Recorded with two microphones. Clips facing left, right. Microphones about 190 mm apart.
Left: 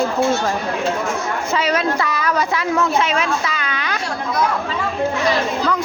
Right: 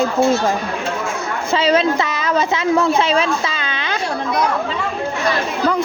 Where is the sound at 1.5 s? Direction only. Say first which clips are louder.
Right 5 dB; 25° right (ahead or behind).